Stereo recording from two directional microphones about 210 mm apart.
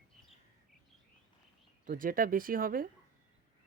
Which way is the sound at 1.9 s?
40° right (ahead or behind).